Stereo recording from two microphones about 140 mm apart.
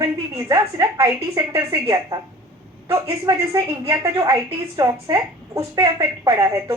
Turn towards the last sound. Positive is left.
turn(degrees=-25)  # may be behind; listen again after turning